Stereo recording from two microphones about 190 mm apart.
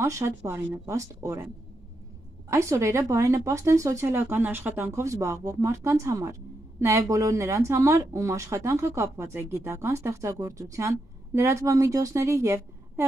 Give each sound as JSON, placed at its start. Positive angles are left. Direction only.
{"t": 0.0, "sound": "speech", "side_deg": -15}
{"t": 2.5, "sound": "speech", "side_deg": -15}